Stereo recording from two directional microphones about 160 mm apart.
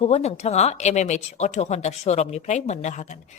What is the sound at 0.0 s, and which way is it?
A woman's voice, 40° left (ahead or behind).